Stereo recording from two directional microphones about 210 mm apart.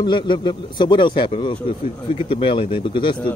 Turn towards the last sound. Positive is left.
turn(degrees=25)  # may be behind; listen again after turning